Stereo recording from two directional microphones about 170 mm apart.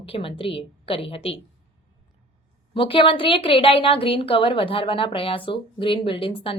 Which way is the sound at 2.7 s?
30° left (ahead or behind).